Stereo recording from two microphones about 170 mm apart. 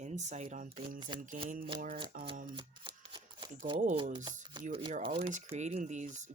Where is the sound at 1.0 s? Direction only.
30° right (ahead or behind).